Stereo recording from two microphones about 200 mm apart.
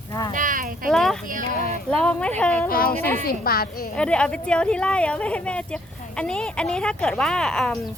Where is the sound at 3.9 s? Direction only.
5° left (ahead or behind).